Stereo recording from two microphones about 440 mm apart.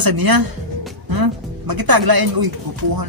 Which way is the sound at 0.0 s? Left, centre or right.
Right.